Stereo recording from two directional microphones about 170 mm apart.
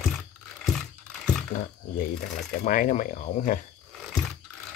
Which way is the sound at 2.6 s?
55° left (ahead or behind).